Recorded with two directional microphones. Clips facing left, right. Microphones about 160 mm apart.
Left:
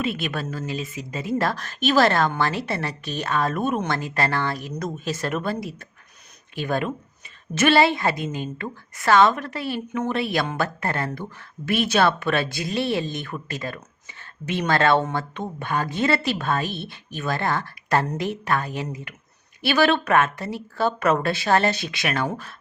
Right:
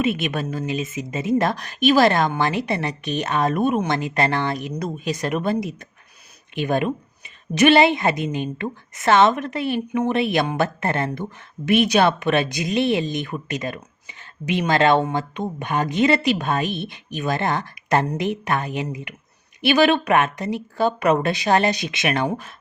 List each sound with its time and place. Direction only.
0.0 s a woman's voice: 20° right (ahead or behind)